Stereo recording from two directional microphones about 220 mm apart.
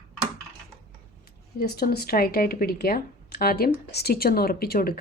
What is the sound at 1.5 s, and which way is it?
Speech, 45° left (ahead or behind).